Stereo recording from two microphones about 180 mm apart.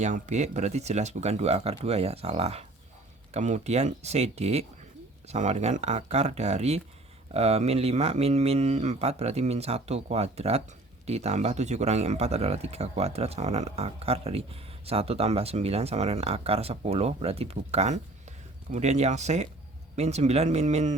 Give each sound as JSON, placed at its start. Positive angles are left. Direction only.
{"t": 0.0, "sound": "speech", "side_deg": -40}